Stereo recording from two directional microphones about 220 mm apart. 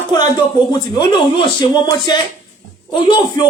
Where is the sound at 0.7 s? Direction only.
20° left (ahead or behind).